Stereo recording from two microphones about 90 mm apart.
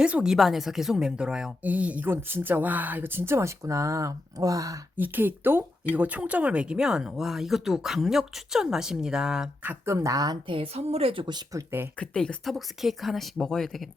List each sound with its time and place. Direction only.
0.0 s a woman's voice: 10° right (ahead or behind); by 4.8 s 40° right (ahead or behind)
4.9 s speech: 20° right (ahead or behind)
9.6 s speech: 30° right (ahead or behind)
10.4 s speech: 80° right
11.9 s speech: 10° left (ahead or behind)